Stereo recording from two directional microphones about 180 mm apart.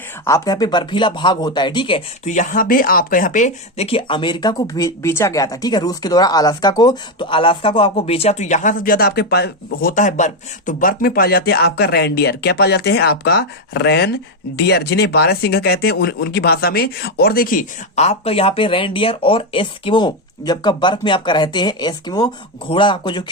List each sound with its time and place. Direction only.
0.3 s speech: 20° left (ahead or behind)
2.2 s speech: 45° left (ahead or behind); by 9.9 s 65° left (ahead or behind)
9.9 s speech: 45° left (ahead or behind); by 23.2 s 25° left (ahead or behind)